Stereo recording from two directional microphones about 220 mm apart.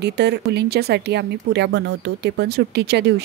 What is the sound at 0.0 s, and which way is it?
Speech, 50° right (ahead or behind).